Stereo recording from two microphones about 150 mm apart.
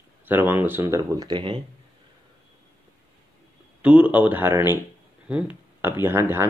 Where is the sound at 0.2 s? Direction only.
15° right (ahead or behind); by 1.6 s 30° right (ahead or behind).